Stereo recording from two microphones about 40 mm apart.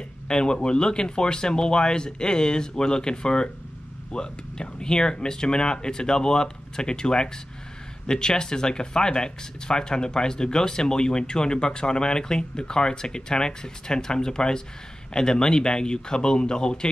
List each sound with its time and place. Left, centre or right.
0.3 s speech: left